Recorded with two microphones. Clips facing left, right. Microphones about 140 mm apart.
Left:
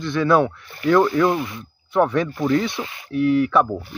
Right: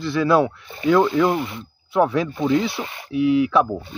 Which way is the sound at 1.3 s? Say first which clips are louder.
Even; 25° right (ahead or behind).